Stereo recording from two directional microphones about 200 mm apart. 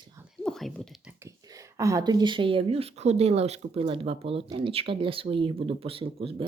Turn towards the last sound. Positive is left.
turn(degrees=-30)  # may be behind; listen again after turning